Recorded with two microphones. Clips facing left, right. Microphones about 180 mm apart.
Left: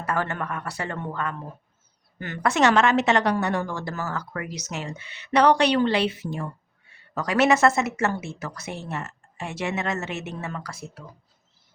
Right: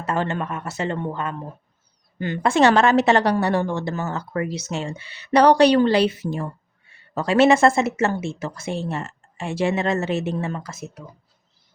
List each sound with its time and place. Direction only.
0.0 s speech: 25° right (ahead or behind)
7.1 s speech: 25° right (ahead or behind)